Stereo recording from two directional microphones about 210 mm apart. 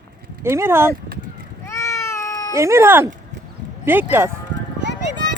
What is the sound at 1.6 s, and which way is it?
Cat, 15° left (ahead or behind).